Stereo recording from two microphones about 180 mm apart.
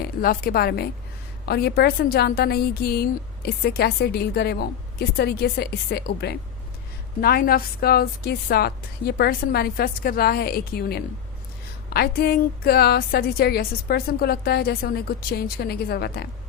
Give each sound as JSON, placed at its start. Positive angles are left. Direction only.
{"t": 0.0, "sound": "a woman's voice", "side_deg": 55}